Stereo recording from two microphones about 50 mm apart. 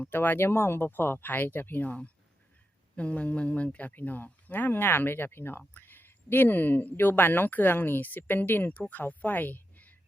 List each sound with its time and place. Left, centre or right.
0.1 s speech: left